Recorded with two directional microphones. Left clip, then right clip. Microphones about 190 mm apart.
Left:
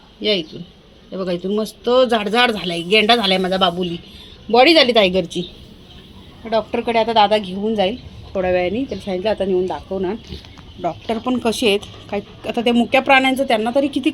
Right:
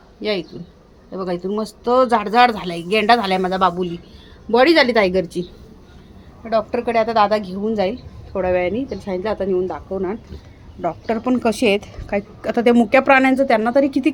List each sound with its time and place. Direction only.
0.2 s a man's voice: centre (ahead or behind)
6.4 s a man's voice: 5° left (ahead or behind)
7.3 s a woman's voice: 35° right (ahead or behind)
7.6 s a man's voice: centre (ahead or behind)